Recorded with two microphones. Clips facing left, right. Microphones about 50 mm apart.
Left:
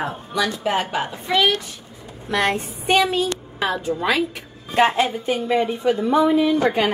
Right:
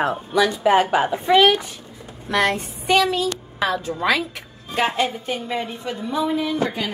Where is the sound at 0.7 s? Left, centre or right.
Centre.